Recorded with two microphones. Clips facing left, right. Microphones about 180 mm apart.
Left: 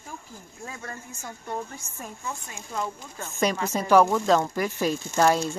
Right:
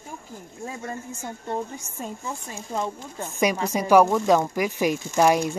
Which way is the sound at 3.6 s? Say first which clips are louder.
Right 2 dB; 10° right (ahead or behind).